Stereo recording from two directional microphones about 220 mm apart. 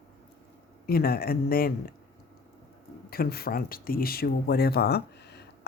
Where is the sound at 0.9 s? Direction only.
45° left (ahead or behind).